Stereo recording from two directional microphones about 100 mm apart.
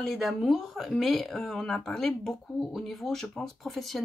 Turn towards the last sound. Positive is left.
turn(degrees=0)  # may be behind; listen again after turning